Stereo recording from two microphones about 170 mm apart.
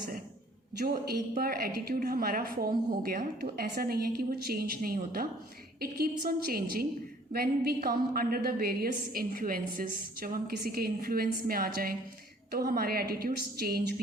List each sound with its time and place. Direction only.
1.3 s a woman's voice: 60° right (ahead or behind)